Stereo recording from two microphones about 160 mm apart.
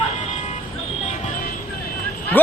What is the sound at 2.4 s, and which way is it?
Speech, 10° left (ahead or behind).